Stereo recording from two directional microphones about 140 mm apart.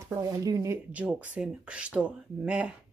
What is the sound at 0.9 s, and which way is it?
Speech, 10° right (ahead or behind).